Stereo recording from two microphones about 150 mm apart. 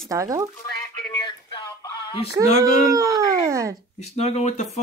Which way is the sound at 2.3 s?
25° right (ahead or behind).